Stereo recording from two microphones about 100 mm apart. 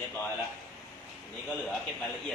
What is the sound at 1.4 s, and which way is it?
Speech, 5° left (ahead or behind).